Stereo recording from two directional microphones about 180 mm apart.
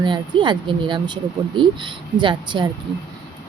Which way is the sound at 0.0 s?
25° right (ahead or behind).